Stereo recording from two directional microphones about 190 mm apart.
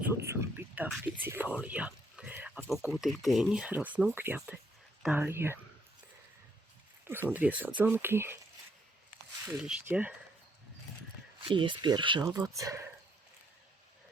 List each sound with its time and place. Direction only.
0.0 s speech: 15° right (ahead or behind)
1.6 s a sound: 5° right (ahead or behind)
2.9 s speech: centre (ahead or behind)
7.0 s a sound: 10° right (ahead or behind)
7.3 s speech: 10° right (ahead or behind)
9.5 s speech: 5° right (ahead or behind)
11.4 s speech: 25° right (ahead or behind)